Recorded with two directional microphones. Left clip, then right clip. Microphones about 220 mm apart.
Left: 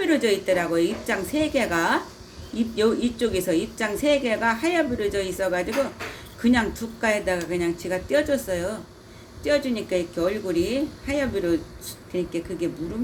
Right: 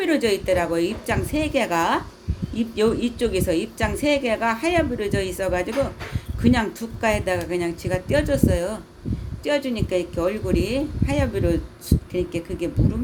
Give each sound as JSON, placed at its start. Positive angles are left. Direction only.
{"t": 0.0, "sound": "a woman's voice", "side_deg": -30}